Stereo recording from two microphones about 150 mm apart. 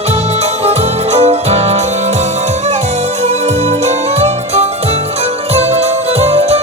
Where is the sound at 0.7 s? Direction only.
45° right (ahead or behind).